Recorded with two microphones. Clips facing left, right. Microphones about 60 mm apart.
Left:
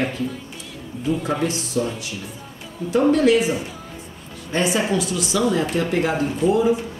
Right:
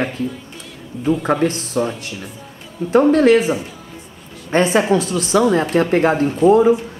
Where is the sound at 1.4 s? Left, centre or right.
Right.